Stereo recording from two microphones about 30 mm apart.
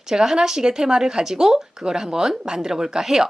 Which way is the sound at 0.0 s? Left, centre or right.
Centre.